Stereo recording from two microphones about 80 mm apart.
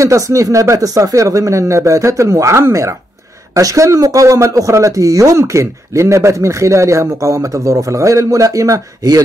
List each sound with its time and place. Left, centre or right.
0.0 s a man's voice: right